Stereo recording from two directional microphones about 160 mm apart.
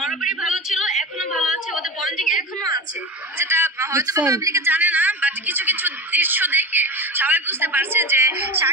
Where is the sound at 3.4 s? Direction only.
15° right (ahead or behind).